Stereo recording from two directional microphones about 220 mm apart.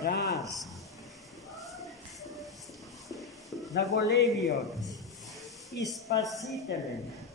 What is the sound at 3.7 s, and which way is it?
Speech, 50° left (ahead or behind).